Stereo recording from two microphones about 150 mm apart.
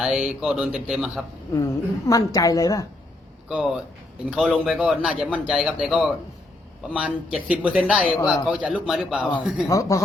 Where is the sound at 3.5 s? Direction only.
5° right (ahead or behind).